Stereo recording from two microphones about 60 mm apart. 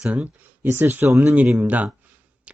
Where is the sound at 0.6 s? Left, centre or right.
Right.